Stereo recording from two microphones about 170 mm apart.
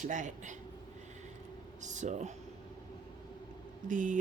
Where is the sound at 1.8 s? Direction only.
45° right (ahead or behind).